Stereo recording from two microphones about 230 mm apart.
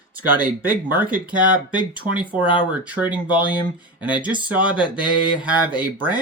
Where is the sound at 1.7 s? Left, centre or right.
Centre.